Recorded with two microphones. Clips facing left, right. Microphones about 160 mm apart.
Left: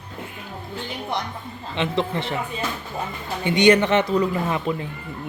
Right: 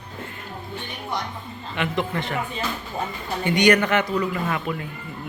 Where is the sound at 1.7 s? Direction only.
25° left (ahead or behind).